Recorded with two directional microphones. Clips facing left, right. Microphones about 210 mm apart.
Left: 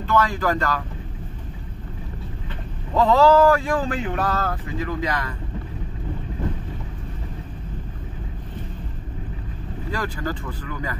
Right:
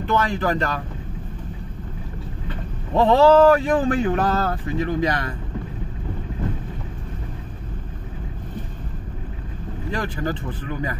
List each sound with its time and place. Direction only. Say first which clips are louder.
0.0 s speech: even; 20° right (ahead or behind)
2.9 s speech: right 2 dB; 25° right (ahead or behind)
9.8 s speech: right 2 dB; 25° right (ahead or behind)